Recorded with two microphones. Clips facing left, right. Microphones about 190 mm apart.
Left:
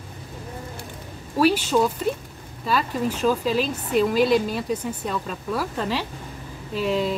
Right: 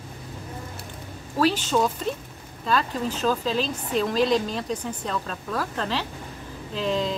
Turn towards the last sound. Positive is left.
turn(degrees=10)  # may be behind; listen again after turning